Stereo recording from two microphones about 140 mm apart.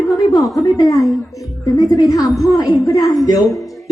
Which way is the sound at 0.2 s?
25° left (ahead or behind).